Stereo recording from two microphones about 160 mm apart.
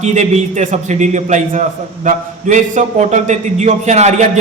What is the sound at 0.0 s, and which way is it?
A man's voice, 45° right (ahead or behind).